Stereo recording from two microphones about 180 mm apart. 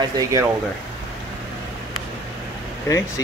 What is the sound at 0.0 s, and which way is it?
Speech, 20° right (ahead or behind).